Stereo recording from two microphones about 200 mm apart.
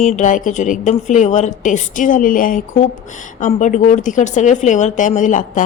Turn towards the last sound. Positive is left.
turn(degrees=40)  # may be behind; listen again after turning